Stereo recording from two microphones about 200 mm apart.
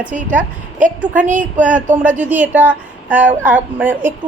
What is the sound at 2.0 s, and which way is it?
A woman's voice, 5° right (ahead or behind).